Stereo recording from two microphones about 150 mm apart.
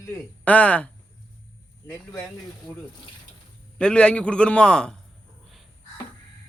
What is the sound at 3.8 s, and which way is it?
A man's voice, 5° left (ahead or behind).